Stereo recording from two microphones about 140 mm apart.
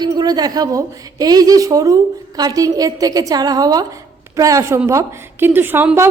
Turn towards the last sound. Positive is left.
turn(degrees=-15)  # may be behind; listen again after turning